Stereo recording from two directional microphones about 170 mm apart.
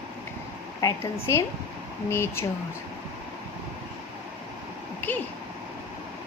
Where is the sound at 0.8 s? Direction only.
15° left (ahead or behind).